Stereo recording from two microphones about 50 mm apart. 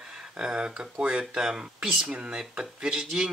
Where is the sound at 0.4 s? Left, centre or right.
Centre.